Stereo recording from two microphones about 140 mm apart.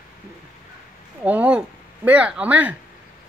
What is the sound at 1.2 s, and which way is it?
Speech, 10° right (ahead or behind).